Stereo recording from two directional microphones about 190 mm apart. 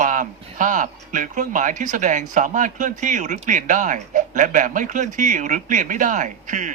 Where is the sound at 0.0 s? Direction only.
45° right (ahead or behind).